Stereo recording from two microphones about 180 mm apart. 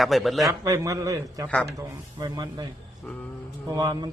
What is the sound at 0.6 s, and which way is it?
A man's voice, 20° right (ahead or behind).